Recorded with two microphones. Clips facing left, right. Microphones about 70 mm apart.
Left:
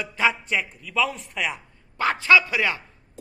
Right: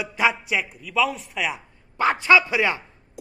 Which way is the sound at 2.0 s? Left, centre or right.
Right.